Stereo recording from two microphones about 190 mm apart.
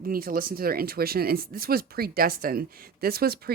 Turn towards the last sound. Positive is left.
turn(degrees=-55)  # may be behind; listen again after turning